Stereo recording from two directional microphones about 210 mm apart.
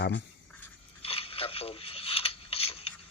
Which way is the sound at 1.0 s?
25° left (ahead or behind).